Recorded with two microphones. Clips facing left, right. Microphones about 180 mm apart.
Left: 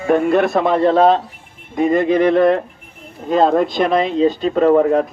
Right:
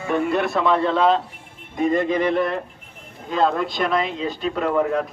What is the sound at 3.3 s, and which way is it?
A man's voice, 45° left (ahead or behind).